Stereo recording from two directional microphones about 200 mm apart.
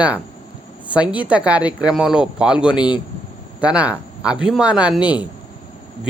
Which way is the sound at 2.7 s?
20° left (ahead or behind).